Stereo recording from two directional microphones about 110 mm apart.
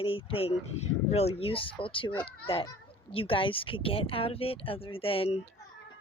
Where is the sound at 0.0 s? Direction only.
55° left (ahead or behind).